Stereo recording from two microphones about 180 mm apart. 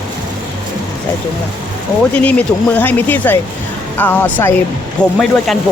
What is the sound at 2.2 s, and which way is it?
Speech, 10° left (ahead or behind).